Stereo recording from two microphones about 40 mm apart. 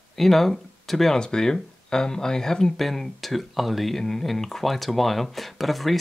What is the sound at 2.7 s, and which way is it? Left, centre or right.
Speech, centre.